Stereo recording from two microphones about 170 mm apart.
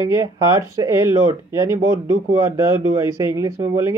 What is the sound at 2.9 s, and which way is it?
Speech, 20° right (ahead or behind).